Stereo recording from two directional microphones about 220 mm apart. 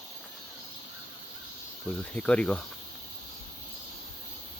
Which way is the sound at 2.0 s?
5° left (ahead or behind).